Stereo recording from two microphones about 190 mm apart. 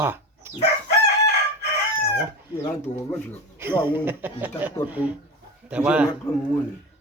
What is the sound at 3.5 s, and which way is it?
Speech, 10° right (ahead or behind).